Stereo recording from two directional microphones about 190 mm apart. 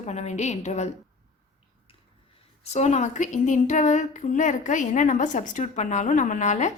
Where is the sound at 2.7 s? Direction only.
35° left (ahead or behind).